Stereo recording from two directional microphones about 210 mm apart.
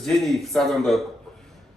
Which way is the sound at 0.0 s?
Centre (ahead or behind).